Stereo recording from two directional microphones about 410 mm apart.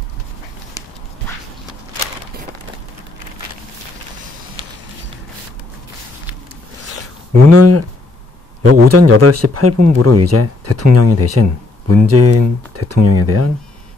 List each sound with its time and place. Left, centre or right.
7.4 s speech: right